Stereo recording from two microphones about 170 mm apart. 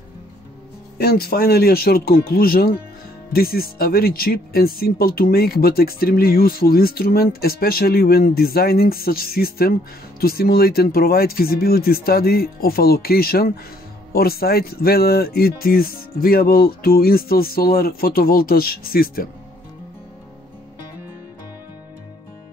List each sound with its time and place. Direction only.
0.9 s speech: 65° left (ahead or behind)